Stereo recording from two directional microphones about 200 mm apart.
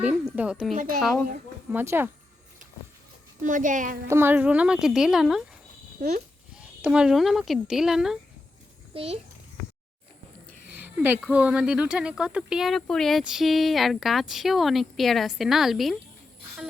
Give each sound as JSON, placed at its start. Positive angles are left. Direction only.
{"t": 0.0, "sound": "speech", "side_deg": -5}
{"t": 1.7, "sound": "speech", "side_deg": -10}
{"t": 3.4, "sound": "a woman's voice", "side_deg": -40}
{"t": 4.1, "sound": "speech", "side_deg": -10}
{"t": 6.0, "sound": "speech", "side_deg": -40}
{"t": 6.6, "sound": "speech", "side_deg": -5}
{"t": 8.9, "sound": "a child's voice", "side_deg": -30}
{"t": 10.7, "sound": "speech", "side_deg": -10}